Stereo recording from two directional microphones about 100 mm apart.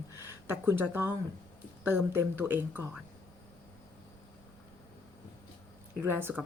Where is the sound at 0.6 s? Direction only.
25° right (ahead or behind).